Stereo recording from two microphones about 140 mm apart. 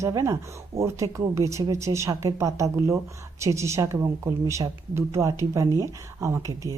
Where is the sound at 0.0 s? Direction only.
20° right (ahead or behind).